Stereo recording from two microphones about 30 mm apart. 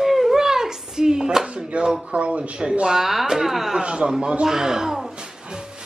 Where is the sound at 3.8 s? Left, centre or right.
Right.